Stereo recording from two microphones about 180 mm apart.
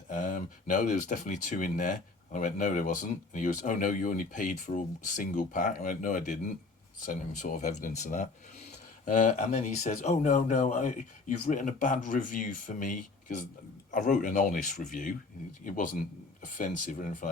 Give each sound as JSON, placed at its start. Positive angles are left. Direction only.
{"t": 0.1, "sound": "speech", "side_deg": 45}